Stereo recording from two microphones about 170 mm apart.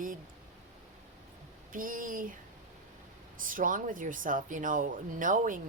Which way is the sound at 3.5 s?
50° right (ahead or behind).